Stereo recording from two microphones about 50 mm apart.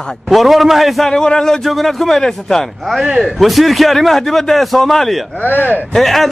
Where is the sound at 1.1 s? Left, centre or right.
Centre.